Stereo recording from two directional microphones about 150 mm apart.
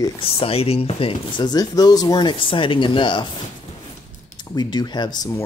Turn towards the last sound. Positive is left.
turn(degrees=25)  # may be behind; listen again after turning